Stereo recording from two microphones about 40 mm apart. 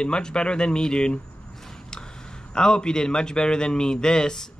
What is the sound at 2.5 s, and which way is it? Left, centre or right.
A man's voice, centre.